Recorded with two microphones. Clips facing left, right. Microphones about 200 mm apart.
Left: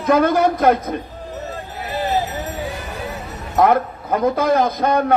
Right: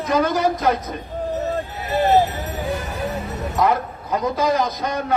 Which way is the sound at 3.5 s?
55° left (ahead or behind).